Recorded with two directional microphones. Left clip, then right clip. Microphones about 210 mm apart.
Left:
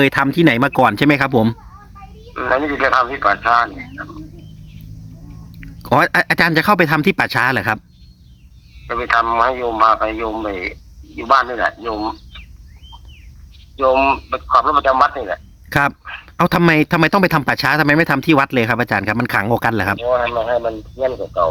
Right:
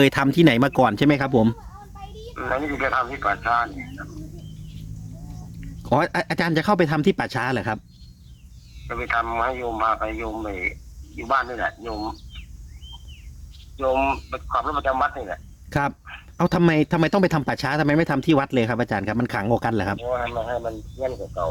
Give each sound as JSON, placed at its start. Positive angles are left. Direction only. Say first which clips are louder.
{"t": 0.0, "sound": "speech", "louder": "left 4 dB", "side_deg": 5}
{"t": 2.3, "sound": "speech", "louder": "left 8 dB", "side_deg": 45}
{"t": 5.5, "sound": "speech", "louder": "left 7 dB", "side_deg": 20}
{"t": 8.9, "sound": "speech", "louder": "left 8 dB", "side_deg": 45}
{"t": 13.7, "sound": "speech", "louder": "left 8 dB", "side_deg": 45}
{"t": 15.7, "sound": "speech", "louder": "left 8 dB", "side_deg": 25}
{"t": 20.0, "sound": "speech", "louder": "left 9 dB", "side_deg": 45}